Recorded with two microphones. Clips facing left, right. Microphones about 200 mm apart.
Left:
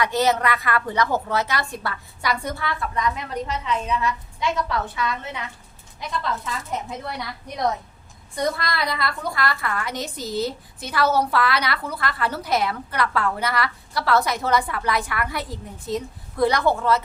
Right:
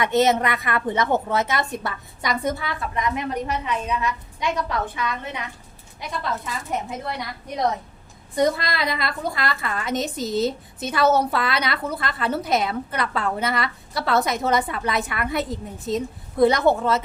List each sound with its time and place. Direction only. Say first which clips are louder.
0.0 s a woman's voice: right 2 dB; 25° right (ahead or behind)
8.4 s a woman's voice: right 4 dB; 20° right (ahead or behind)